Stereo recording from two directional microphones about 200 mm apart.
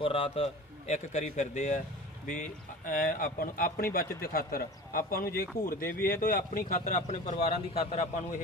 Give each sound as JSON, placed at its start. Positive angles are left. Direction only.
{"t": 0.0, "sound": "a man's voice", "side_deg": 25}